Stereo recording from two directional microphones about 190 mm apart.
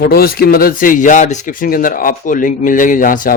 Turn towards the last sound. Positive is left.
turn(degrees=45)  # may be behind; listen again after turning